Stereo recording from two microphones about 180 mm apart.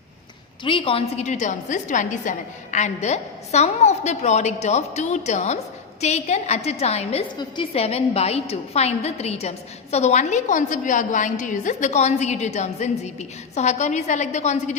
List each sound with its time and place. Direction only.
0.6 s a woman's voice: 30° left (ahead or behind)